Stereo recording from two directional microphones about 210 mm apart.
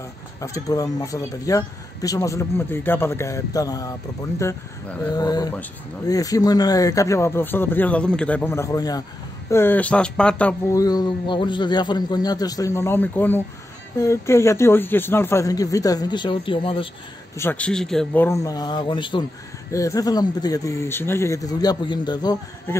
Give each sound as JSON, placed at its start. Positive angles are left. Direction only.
{"t": 0.4, "sound": "speech", "side_deg": 15}
{"t": 17.4, "sound": "speech", "side_deg": 10}